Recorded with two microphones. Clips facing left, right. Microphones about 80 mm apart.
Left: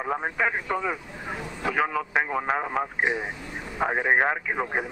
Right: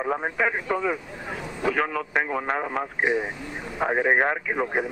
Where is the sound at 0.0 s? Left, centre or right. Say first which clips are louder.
Right 2 dB; centre.